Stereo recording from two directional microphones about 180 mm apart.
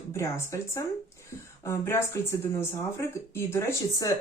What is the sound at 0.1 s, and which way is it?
Speech, 15° left (ahead or behind).